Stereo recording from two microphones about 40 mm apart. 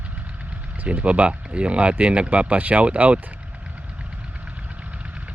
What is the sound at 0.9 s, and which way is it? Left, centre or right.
Speech, right.